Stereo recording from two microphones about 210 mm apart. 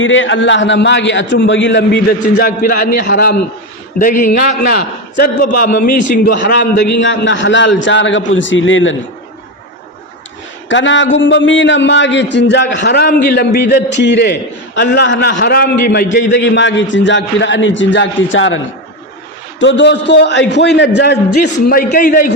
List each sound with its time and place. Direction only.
0.0 s a man's voice: 65° left (ahead or behind); by 6.4 s 40° left (ahead or behind)
6.4 s a man's voice: 50° left (ahead or behind)
10.7 s a man's voice: 60° left (ahead or behind)
21.7 s a man's voice: 40° left (ahead or behind)